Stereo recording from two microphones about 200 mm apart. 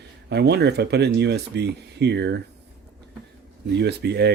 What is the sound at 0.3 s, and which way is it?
Speech, 55° right (ahead or behind).